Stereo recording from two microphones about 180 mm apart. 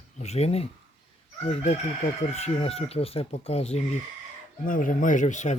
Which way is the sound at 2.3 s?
35° left (ahead or behind).